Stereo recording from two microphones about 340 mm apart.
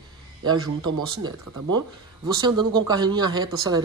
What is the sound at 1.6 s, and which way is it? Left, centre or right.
Speech, right.